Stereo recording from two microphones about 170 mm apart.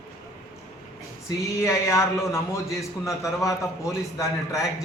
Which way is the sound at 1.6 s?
15° left (ahead or behind).